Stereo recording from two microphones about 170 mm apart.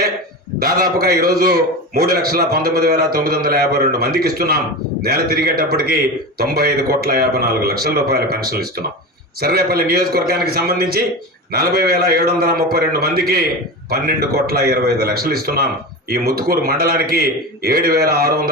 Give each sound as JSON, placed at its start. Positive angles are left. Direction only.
{"t": 0.6, "sound": "a man's voice", "side_deg": -65}